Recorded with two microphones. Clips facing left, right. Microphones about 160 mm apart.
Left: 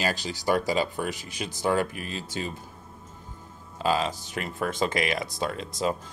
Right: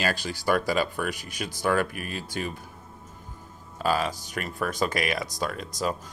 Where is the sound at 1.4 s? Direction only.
20° left (ahead or behind).